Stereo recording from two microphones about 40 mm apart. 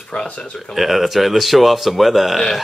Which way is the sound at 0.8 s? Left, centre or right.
Centre.